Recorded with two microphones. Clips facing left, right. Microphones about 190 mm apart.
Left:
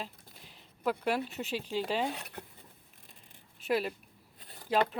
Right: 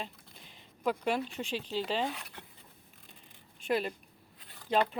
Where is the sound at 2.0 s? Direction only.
30° left (ahead or behind).